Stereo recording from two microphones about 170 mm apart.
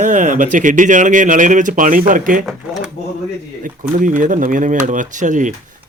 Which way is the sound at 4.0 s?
50° right (ahead or behind).